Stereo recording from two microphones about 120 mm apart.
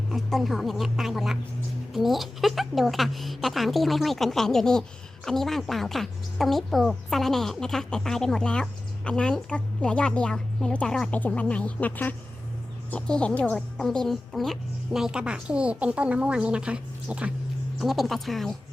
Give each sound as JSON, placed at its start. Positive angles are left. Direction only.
{"t": 0.1, "sound": "a woman's voice", "side_deg": 0}